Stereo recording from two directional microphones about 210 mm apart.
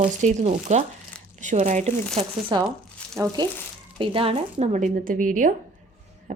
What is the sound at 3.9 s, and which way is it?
A woman's voice, 25° right (ahead or behind).